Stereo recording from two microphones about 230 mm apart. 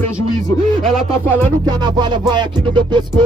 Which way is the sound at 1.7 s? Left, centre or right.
Centre.